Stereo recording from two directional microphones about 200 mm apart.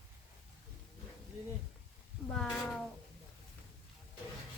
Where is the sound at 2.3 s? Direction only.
5° left (ahead or behind).